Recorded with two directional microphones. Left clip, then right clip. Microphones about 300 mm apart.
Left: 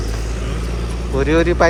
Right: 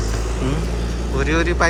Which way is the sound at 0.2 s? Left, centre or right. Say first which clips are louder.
Right 2 dB; right.